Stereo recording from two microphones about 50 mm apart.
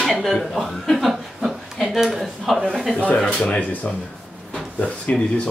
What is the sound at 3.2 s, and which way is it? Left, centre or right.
Speech, centre.